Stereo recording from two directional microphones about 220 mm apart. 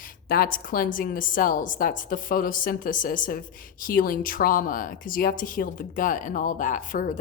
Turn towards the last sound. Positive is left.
turn(degrees=35)  # may be behind; listen again after turning